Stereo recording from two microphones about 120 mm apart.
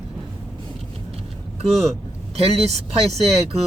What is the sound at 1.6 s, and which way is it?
Speech, 60° right (ahead or behind).